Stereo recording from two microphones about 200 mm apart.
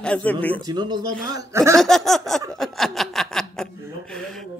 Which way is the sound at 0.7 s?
20° right (ahead or behind).